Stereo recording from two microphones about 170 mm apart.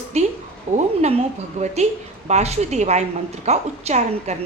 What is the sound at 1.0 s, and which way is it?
A woman's voice, 40° right (ahead or behind).